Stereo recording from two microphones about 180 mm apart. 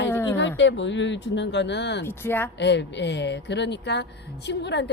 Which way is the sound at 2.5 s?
75° left (ahead or behind).